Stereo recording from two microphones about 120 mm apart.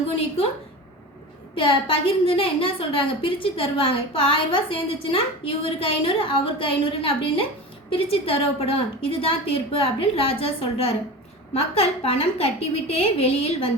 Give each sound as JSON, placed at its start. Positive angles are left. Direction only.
{"t": 1.5, "sound": "a woman's voice", "side_deg": 50}